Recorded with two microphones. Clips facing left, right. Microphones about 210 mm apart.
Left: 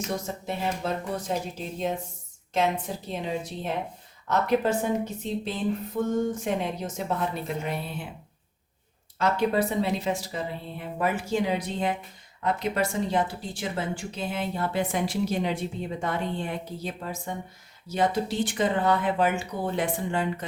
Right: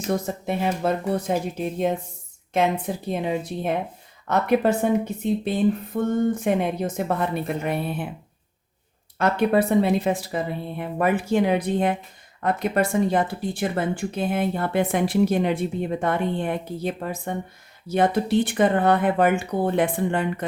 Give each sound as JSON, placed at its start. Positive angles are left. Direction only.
{"t": 0.4, "sound": "speech", "side_deg": -60}
{"t": 9.1, "sound": "speech", "side_deg": -55}